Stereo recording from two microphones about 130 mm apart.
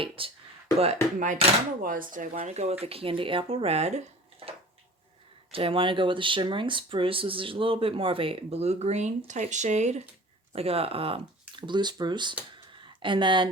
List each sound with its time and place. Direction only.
0.2 s speech: 45° right (ahead or behind)
0.8 s speech: 65° right (ahead or behind)
1.8 s speech: 90° right; by 2.7 s 55° right (ahead or behind)
2.8 s speech: 45° right (ahead or behind); by 10.0 s 65° right (ahead or behind)
10.5 s speech: 50° right (ahead or behind)
12.7 s a sound: 40° right (ahead or behind)